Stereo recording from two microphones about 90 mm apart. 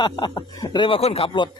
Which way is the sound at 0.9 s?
90° left.